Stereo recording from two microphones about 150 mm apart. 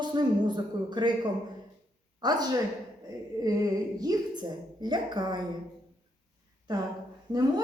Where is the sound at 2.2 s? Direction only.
25° right (ahead or behind).